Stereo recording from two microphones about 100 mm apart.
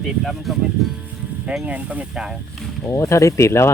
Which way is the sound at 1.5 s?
10° right (ahead or behind).